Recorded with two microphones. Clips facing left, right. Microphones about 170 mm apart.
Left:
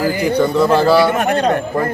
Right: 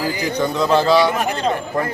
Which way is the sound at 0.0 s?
55° left (ahead or behind).